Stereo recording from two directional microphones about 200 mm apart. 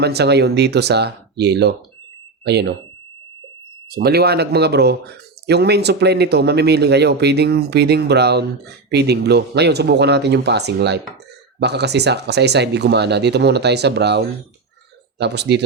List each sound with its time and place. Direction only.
0.0 s speech: 55° right (ahead or behind)
3.8 s speech: 50° right (ahead or behind)